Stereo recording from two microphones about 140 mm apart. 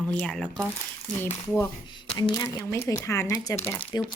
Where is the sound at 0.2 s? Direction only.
5° left (ahead or behind).